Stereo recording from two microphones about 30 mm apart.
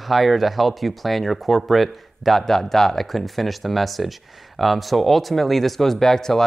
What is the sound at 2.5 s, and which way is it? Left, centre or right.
Speech, centre.